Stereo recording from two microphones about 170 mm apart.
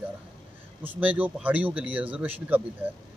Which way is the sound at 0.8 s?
10° right (ahead or behind).